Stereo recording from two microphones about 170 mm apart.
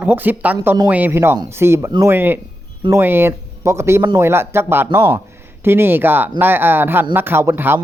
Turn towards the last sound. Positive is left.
turn(degrees=-15)  # may be behind; listen again after turning